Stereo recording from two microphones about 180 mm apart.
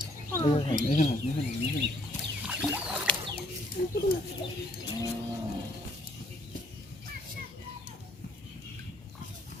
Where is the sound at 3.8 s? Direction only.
60° left (ahead or behind).